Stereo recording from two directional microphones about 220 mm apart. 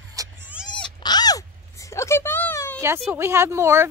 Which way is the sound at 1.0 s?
20° left (ahead or behind).